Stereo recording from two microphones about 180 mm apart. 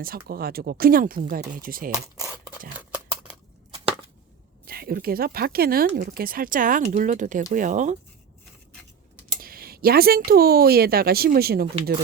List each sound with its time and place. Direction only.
0.0 s speech: 55° right (ahead or behind)
2.7 s a sound: 5° right (ahead or behind)
4.6 s speech: 60° right (ahead or behind)
9.4 s speech: 55° right (ahead or behind)